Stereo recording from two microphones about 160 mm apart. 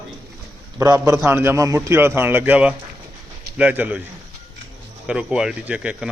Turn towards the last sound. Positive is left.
turn(degrees=-5)  # may be behind; listen again after turning